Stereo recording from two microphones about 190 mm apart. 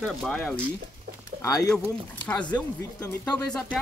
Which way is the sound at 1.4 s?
15° left (ahead or behind).